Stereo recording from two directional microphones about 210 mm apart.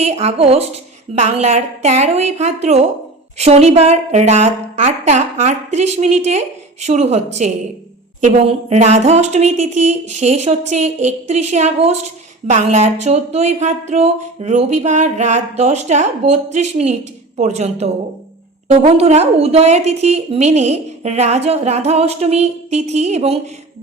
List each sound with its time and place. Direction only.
0.0 s a woman's voice: 30° right (ahead or behind)